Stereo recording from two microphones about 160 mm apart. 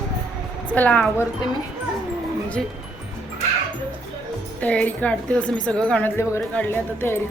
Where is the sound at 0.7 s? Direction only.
10° left (ahead or behind).